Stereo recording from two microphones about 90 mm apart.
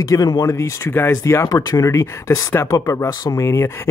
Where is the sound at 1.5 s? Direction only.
45° left (ahead or behind).